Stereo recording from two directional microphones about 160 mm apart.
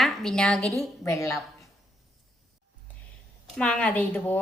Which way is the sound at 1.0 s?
20° left (ahead or behind).